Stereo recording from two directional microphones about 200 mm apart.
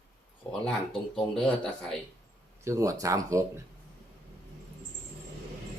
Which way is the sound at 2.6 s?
15° right (ahead or behind).